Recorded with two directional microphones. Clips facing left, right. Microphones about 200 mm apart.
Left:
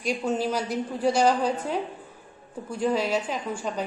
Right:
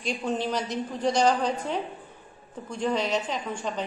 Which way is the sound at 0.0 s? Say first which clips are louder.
Left 2 dB; 5° left (ahead or behind).